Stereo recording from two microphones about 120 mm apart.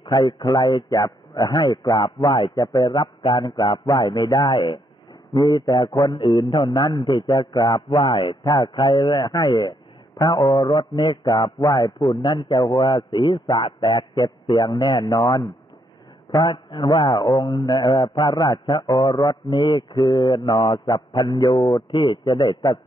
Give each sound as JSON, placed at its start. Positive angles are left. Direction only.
{"t": 0.0, "sound": "a man's voice", "side_deg": 35}